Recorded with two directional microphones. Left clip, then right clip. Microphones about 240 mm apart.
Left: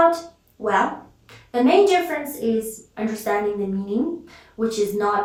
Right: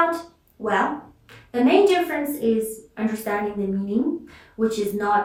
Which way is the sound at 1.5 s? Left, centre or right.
Centre.